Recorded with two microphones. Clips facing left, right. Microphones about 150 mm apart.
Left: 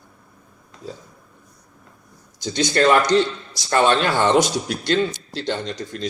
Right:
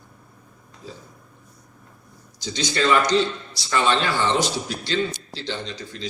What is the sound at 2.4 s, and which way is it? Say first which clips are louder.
A man's voice: left 5 dB; 55° left (ahead or behind).